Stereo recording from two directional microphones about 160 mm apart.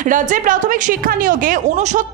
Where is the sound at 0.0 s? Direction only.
55° right (ahead or behind).